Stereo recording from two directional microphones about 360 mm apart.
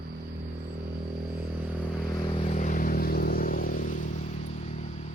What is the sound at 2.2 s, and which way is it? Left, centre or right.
Vehicle, centre.